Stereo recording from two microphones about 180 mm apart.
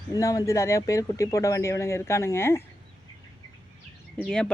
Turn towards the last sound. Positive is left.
turn(degrees=5)  # may be behind; listen again after turning